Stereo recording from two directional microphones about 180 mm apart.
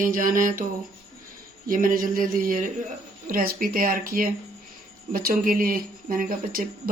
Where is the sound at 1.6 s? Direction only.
50° right (ahead or behind).